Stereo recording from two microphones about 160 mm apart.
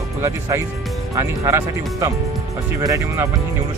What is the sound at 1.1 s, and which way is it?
Speech, 20° right (ahead or behind).